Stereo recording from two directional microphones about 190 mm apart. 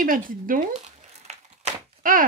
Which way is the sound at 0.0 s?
45° right (ahead or behind).